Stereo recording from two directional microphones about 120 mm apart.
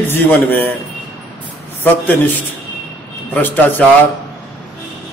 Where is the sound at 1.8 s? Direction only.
15° left (ahead or behind).